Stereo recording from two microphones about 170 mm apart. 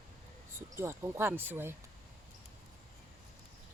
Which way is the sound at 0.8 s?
15° right (ahead or behind).